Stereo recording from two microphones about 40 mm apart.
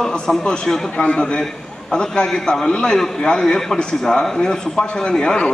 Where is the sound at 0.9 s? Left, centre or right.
Left.